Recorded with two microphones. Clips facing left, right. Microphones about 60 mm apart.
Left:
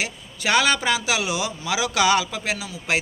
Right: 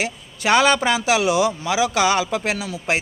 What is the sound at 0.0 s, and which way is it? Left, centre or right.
A man's voice, right.